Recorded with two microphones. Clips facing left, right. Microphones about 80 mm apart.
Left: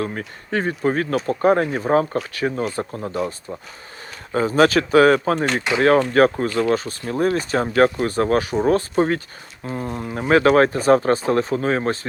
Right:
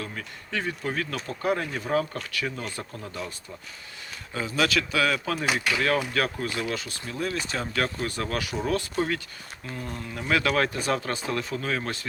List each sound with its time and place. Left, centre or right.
0.0 s speech: left